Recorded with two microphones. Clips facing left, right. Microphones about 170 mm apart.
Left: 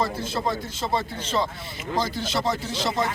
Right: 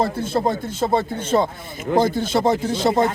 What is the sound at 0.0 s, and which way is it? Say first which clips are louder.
A man's voice: right 6 dB; 50° right (ahead or behind).